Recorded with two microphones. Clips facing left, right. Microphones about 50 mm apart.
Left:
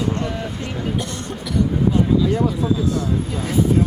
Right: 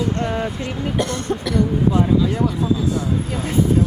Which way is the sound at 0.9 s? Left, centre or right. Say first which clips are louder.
Right 5 dB; right.